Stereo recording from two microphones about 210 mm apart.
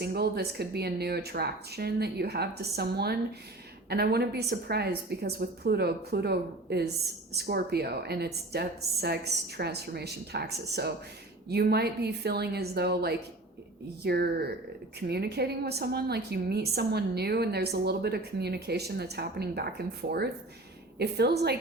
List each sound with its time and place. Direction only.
0.0 s a woman's voice: 50° right (ahead or behind)